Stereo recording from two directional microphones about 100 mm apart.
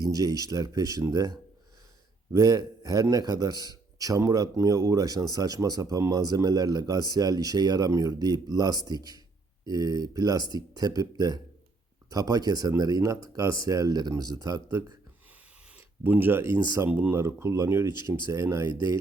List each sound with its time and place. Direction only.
0.1 s a man's voice: 35° right (ahead or behind)
2.3 s a man's voice: 35° right (ahead or behind)
16.0 s a man's voice: 20° right (ahead or behind)